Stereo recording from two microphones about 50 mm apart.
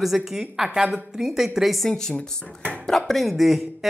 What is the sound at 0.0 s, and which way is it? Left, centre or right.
A woman's voice, centre.